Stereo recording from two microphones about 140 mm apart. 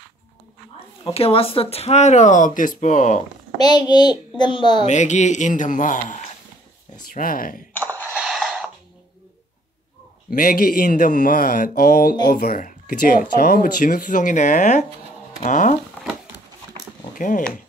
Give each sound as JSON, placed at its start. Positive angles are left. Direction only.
{"t": 1.1, "sound": "speech", "side_deg": 45}
{"t": 3.5, "sound": "a child's voice", "side_deg": 30}
{"t": 4.8, "sound": "speech", "side_deg": 60}
{"t": 7.1, "sound": "speech", "side_deg": 90}
{"t": 8.1, "sound": "a sound", "side_deg": -5}
{"t": 10.3, "sound": "speech", "side_deg": 85}
{"t": 15.9, "sound": "crumpling", "side_deg": -5}
{"t": 17.0, "sound": "a sound", "side_deg": 65}